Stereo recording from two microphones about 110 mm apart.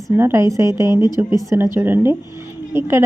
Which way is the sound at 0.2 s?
25° right (ahead or behind).